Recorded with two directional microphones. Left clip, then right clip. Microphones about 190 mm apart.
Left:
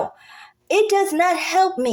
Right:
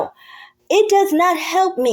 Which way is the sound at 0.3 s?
10° right (ahead or behind).